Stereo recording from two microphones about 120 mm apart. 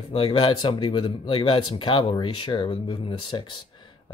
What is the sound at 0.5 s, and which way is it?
Speech, 40° left (ahead or behind).